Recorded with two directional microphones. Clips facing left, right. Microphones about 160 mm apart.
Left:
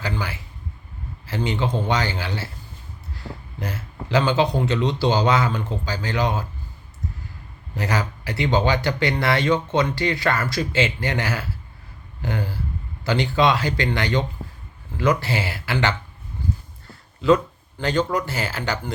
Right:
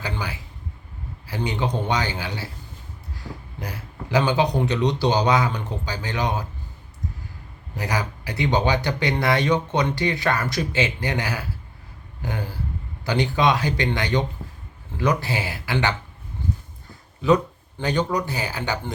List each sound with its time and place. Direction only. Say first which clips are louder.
0.0 s speech: left 2 dB; 20° right (ahead or behind)
7.9 s speech: left 1 dB; 15° right (ahead or behind)
16.9 s a sound: left 1 dB; 20° right (ahead or behind)
18.3 s speech: left 1 dB; 15° right (ahead or behind)